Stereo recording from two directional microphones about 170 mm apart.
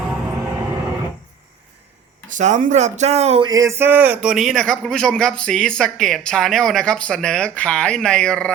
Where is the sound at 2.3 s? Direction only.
45° right (ahead or behind).